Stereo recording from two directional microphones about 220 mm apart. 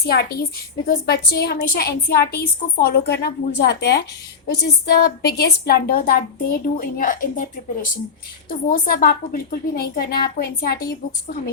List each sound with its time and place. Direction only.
0.0 s a woman's voice: 45° left (ahead or behind)